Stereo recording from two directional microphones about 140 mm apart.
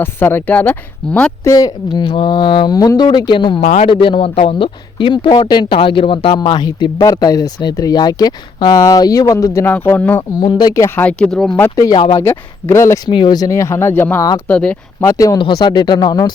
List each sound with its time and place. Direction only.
0.0 s speech: 15° left (ahead or behind)
1.5 s speech: 25° left (ahead or behind)
3.6 s a man's voice: 55° left (ahead or behind)
3.8 s speech: 40° left (ahead or behind); by 10.2 s 15° left (ahead or behind)
10.4 s speech: 30° left (ahead or behind)
10.8 s speech: 15° left (ahead or behind)
11.8 s speech: 25° left (ahead or behind)
13.1 s speech: 30° left (ahead or behind); by 14.8 s 10° left (ahead or behind)
15.0 s speech: 25° left (ahead or behind)